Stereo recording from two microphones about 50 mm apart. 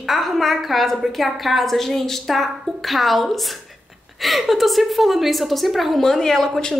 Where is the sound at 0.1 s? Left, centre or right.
Centre.